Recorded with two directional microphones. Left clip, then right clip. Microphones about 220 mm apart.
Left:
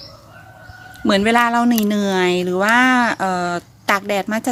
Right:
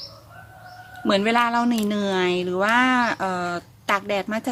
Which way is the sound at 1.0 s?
25° left (ahead or behind).